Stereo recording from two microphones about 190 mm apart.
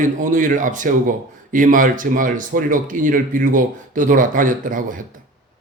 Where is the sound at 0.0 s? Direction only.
45° right (ahead or behind).